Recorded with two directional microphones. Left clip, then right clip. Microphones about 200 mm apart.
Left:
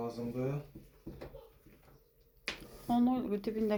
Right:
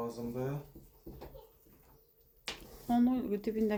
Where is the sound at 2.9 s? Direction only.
25° right (ahead or behind).